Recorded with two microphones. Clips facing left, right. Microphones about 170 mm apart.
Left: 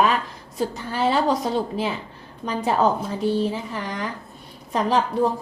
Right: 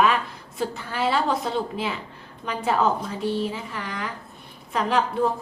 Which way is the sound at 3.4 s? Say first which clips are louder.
Left 4 dB; 40° left (ahead or behind).